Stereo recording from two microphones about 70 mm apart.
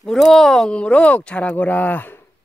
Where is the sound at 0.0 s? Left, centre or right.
Centre.